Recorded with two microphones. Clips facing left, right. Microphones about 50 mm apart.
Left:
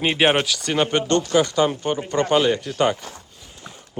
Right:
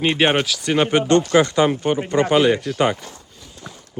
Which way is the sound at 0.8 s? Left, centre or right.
Centre.